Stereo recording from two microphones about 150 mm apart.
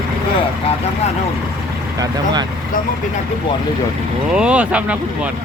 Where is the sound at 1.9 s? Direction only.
30° right (ahead or behind).